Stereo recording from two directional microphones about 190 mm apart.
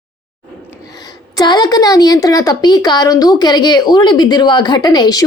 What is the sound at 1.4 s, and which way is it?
A woman's voice, 20° left (ahead or behind).